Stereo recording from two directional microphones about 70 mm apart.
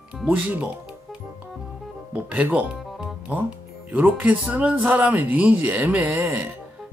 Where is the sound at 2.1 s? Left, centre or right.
Right.